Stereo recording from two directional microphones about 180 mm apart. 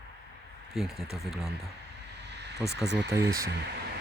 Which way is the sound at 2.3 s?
70° right (ahead or behind).